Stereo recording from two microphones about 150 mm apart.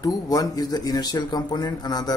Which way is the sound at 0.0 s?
25° left (ahead or behind).